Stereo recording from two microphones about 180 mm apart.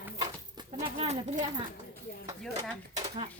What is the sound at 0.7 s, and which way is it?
Speech, 35° right (ahead or behind).